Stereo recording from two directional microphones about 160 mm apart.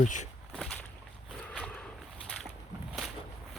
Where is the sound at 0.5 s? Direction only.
5° left (ahead or behind).